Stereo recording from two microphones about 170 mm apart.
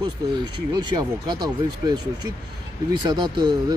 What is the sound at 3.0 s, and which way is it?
Speech, 25° right (ahead or behind).